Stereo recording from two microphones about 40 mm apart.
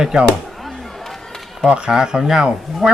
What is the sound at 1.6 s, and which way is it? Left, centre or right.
Speech, centre.